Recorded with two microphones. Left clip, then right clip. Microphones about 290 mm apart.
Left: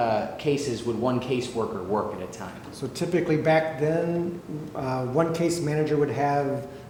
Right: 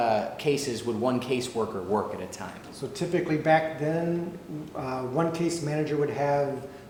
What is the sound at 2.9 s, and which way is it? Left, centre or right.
A man's voice, right.